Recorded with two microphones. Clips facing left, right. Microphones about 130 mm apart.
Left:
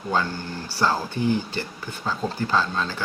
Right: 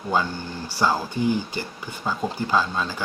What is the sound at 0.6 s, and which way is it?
Speech, 15° right (ahead or behind).